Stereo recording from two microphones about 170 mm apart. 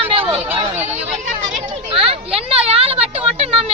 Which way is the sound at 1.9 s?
35° right (ahead or behind).